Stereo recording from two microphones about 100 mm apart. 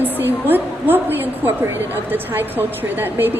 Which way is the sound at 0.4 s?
20° right (ahead or behind).